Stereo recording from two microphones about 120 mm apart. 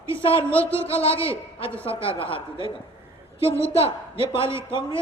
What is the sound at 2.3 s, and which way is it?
Speech, 45° left (ahead or behind).